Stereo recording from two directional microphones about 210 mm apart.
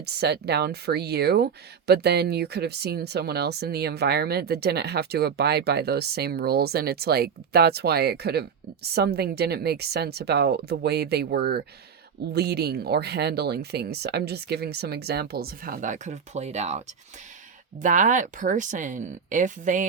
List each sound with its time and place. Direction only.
0.0 s speech: 50° right (ahead or behind)